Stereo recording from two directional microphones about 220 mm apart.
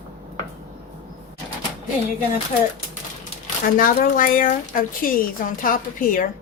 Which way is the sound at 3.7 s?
40° left (ahead or behind).